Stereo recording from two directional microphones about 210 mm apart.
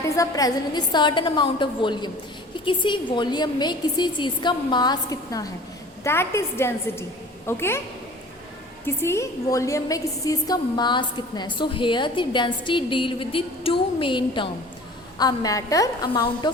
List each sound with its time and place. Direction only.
0.2 s a woman's voice: 15° left (ahead or behind)
8.8 s a woman's voice: 10° left (ahead or behind)